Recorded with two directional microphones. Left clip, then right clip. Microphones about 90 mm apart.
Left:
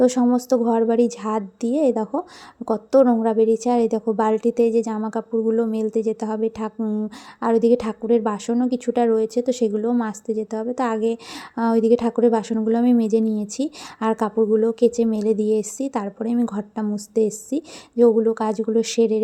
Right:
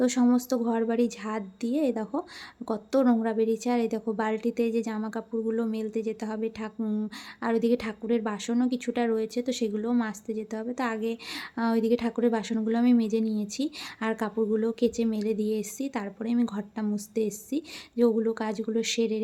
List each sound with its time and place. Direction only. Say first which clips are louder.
0.0 s a woman's voice: left 7 dB; 30° left (ahead or behind)
6.8 s a woman's voice: left 5 dB; 20° left (ahead or behind)
7.3 s a woman's voice: left 9 dB; 35° left (ahead or behind)